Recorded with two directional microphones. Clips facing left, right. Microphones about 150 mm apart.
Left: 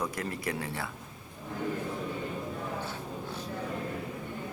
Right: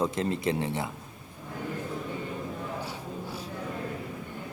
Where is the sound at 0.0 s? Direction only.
25° right (ahead or behind).